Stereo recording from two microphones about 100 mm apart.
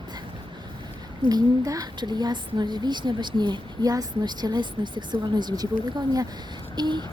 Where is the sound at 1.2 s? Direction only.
40° right (ahead or behind).